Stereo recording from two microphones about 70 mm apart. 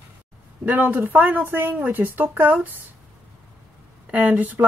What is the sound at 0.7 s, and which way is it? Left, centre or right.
Speech, right.